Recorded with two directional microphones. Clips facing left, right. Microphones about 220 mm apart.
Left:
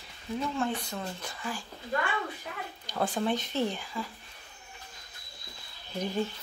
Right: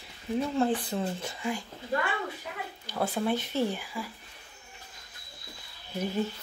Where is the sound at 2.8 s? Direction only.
10° right (ahead or behind).